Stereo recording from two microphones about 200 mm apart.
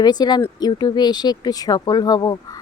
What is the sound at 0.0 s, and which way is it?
Speech, 20° left (ahead or behind).